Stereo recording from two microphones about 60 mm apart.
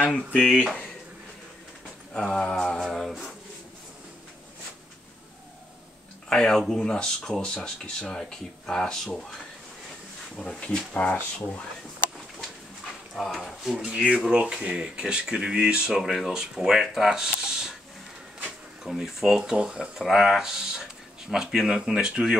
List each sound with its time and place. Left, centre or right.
0.4 s speech: left
2.1 s speech: centre
2.8 s a sound: centre
6.2 s speech: centre
10.4 s speech: centre
10.9 s speech: left
13.1 s a sound: centre
13.7 s speech: centre
16.0 s speech: centre
18.9 s speech: centre